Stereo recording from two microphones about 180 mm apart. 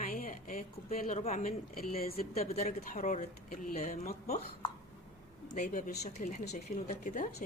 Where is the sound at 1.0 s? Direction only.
40° left (ahead or behind).